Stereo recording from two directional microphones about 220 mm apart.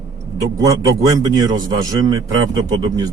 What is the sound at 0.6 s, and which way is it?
Speech, 15° right (ahead or behind).